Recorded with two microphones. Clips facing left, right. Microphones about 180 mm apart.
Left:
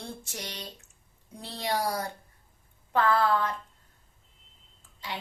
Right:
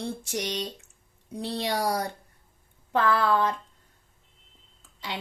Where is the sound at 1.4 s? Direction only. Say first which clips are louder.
Right 3 dB; 75° right (ahead or behind).